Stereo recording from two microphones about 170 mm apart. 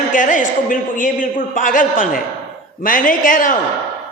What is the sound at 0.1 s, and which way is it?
A man's voice, 50° left (ahead or behind).